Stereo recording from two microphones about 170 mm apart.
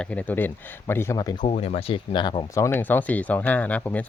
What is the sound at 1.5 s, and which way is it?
Speech, 35° left (ahead or behind).